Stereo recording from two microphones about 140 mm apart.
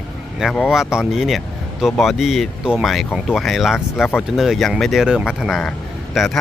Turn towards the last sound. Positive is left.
turn(degrees=0)  # may be behind; listen again after turning